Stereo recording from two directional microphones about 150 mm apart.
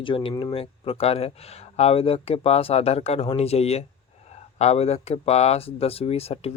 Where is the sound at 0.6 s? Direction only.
40° left (ahead or behind).